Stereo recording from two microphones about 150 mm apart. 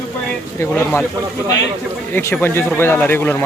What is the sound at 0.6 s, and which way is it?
Speech, 15° left (ahead or behind).